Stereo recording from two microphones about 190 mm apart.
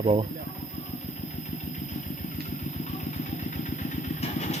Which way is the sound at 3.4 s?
40° left (ahead or behind).